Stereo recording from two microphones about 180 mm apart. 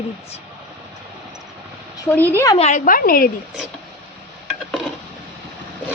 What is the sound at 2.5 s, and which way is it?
Speech, 40° left (ahead or behind).